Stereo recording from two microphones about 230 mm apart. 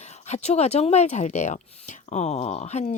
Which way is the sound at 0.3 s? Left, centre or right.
Left.